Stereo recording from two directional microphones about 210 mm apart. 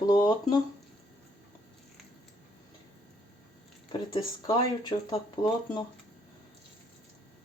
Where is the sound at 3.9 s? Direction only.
20° left (ahead or behind).